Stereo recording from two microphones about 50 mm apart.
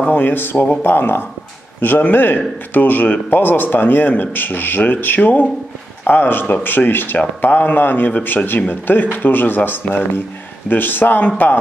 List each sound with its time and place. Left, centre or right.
0.0 s speech: left